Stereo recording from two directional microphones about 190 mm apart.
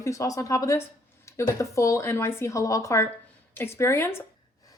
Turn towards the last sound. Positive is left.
turn(degrees=15)  # may be behind; listen again after turning